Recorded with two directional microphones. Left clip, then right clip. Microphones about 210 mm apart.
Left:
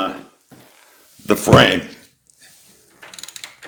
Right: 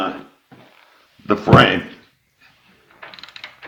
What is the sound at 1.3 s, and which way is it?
Speech, 65° left (ahead or behind).